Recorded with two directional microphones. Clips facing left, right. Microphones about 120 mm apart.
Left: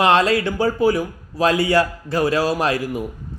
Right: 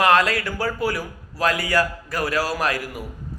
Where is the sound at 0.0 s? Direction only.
25° left (ahead or behind).